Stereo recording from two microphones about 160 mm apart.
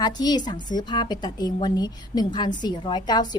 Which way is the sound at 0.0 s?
25° left (ahead or behind).